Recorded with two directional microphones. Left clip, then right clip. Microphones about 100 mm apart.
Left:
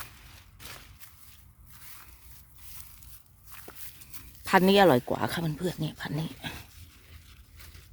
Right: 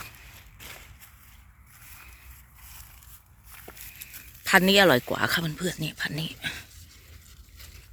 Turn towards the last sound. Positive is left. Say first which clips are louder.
# right 5 dB
turn(degrees=30)  # may be behind; listen again after turning